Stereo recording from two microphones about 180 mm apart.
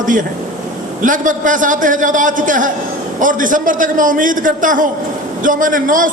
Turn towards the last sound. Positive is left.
turn(degrees=-45)  # may be behind; listen again after turning